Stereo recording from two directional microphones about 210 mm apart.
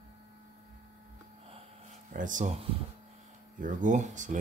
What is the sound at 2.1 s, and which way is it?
Speech, 40° right (ahead or behind).